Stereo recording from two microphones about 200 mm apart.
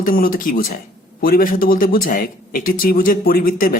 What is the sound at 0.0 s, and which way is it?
Speech, 45° left (ahead or behind).